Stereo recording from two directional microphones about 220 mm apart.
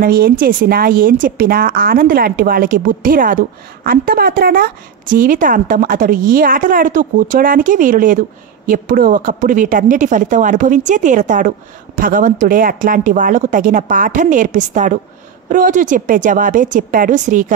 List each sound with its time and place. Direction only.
0.0 s a woman's voice: 40° right (ahead or behind)